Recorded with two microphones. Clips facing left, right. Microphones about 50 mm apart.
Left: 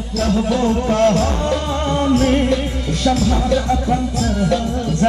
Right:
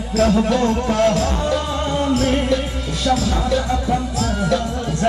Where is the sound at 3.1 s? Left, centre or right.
Centre.